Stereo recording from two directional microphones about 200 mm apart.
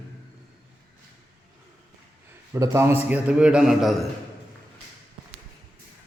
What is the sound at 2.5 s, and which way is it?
A man's voice, 15° right (ahead or behind).